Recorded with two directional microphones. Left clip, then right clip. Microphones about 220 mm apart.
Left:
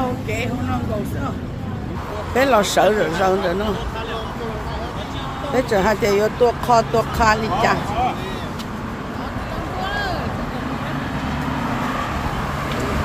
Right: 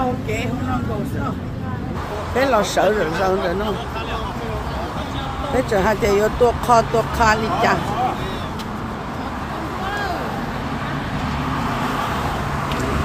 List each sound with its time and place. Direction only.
2.3 s speech: 20° left (ahead or behind)
5.5 s speech: 10° left (ahead or behind)